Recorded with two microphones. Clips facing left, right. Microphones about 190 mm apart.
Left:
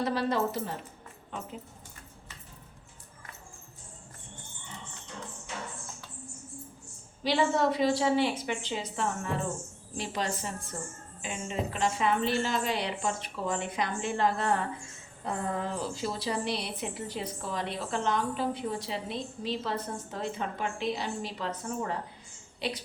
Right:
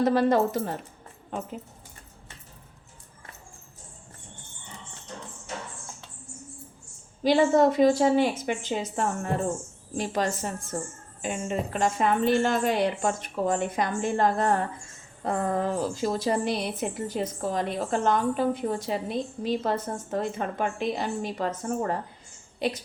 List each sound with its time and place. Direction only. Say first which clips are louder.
0.0 s a woman's voice: right 7 dB; 50° right (ahead or behind)
5.1 s music: right 2 dB; 40° right (ahead or behind)
7.3 s a woman's voice: right 6 dB; 45° right (ahead or behind)